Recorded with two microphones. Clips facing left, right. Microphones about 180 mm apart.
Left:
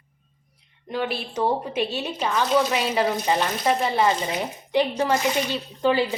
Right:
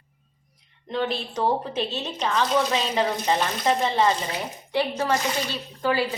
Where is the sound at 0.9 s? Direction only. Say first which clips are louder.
Even; 10° left (ahead or behind).